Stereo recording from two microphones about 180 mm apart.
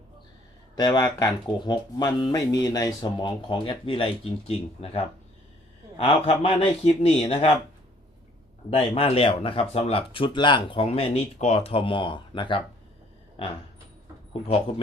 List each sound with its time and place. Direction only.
0.8 s speech: 20° left (ahead or behind)
6.1 s speech: 35° left (ahead or behind)
8.7 s speech: 30° left (ahead or behind)
13.4 s a sound: 30° left (ahead or behind)